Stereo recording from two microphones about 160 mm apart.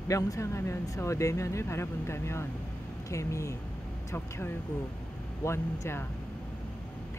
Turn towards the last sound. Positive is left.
turn(degrees=15)  # may be behind; listen again after turning